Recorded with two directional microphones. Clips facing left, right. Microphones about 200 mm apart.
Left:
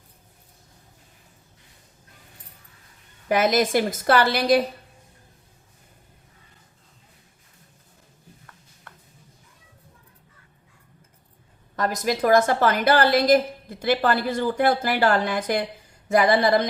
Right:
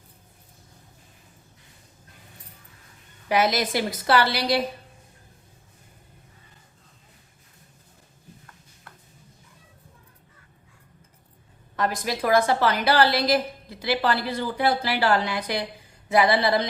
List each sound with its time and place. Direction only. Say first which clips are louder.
3.2 s a woman's voice: left 3 dB; 50° left (ahead or behind)
11.8 s a woman's voice: left 3 dB; 45° left (ahead or behind)